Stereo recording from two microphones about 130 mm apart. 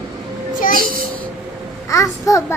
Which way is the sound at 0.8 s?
90° right.